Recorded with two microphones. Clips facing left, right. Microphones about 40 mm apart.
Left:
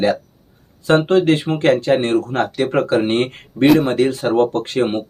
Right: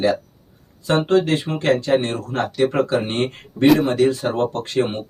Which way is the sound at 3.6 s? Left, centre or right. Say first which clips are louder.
Left 2 dB; centre.